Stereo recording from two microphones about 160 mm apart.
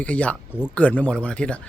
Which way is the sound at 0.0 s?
10° left (ahead or behind).